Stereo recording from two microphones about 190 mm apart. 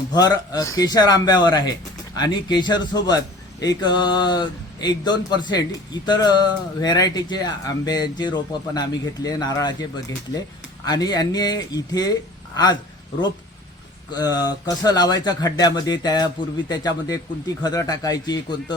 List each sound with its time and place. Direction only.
0.1 s speech: 20° left (ahead or behind)
14.1 s speech: 20° left (ahead or behind)